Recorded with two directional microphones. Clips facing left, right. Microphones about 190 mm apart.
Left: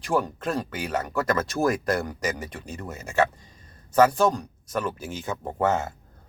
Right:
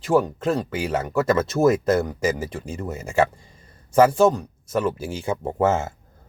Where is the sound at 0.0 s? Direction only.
25° right (ahead or behind).